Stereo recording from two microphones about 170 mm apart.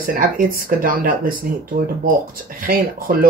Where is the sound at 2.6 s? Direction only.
55° right (ahead or behind).